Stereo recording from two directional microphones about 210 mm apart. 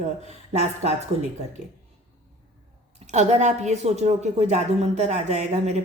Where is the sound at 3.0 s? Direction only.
35° right (ahead or behind).